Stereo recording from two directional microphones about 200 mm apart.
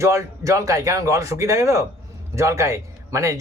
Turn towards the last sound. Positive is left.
turn(degrees=-15)  # may be behind; listen again after turning